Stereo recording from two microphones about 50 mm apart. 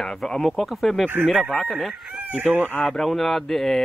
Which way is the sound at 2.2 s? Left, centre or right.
Right.